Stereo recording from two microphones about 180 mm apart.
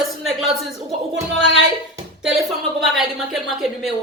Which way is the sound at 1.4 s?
90° right.